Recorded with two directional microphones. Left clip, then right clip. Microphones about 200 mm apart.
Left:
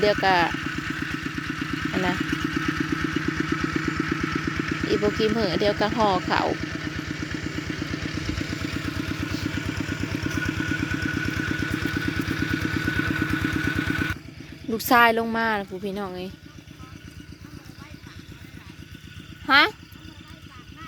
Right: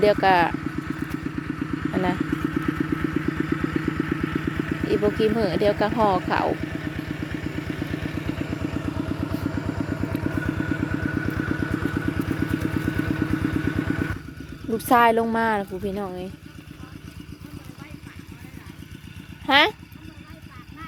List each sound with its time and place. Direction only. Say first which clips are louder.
0.0 s a woman's voice: right 2 dB; 5° right (ahead or behind)
0.5 s vehicle: left 2 dB; 20° left (ahead or behind); by 11.9 s 40° left (ahead or behind)
11.9 s vehicle: even; 30° left (ahead or behind)
14.8 s a woman's voice: even; centre (ahead or behind)
19.5 s a sound: even; 5° right (ahead or behind)